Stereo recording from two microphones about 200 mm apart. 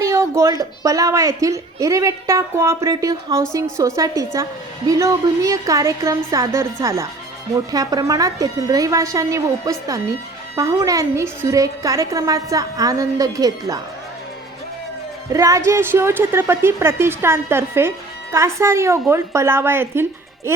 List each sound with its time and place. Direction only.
0.0 s a sound: 15° right (ahead or behind)
0.6 s a woman's voice: 15° right (ahead or behind)
15.3 s a woman's voice: 15° right (ahead or behind)